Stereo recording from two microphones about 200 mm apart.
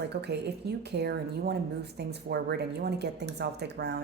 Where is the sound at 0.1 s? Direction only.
55° right (ahead or behind).